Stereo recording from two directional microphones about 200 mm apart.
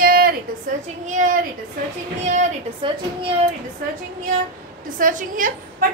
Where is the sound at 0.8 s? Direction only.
35° right (ahead or behind).